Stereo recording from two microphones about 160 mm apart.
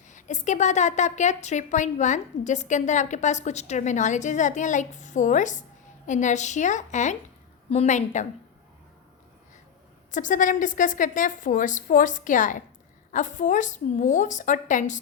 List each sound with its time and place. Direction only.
0.1 s a woman's voice: 50° left (ahead or behind)
10.1 s a woman's voice: 55° left (ahead or behind)